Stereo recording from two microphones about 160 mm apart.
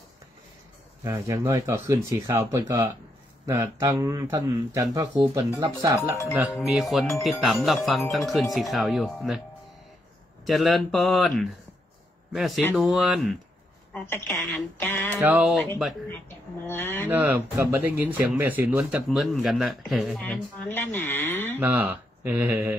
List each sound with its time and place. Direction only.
1.0 s speech: 20° right (ahead or behind)
6.6 s speech: centre (ahead or behind)
10.4 s speech: centre (ahead or behind)
13.9 s speech: 15° left (ahead or behind)
15.1 s speech: 10° right (ahead or behind)
16.6 s speech: 15° left (ahead or behind)
17.1 s speech: 10° right (ahead or behind); by 21.5 s 15° left (ahead or behind)
21.5 s speech: 10° right (ahead or behind)